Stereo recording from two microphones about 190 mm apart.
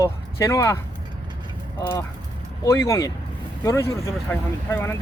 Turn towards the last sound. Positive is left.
turn(degrees=10)  # may be behind; listen again after turning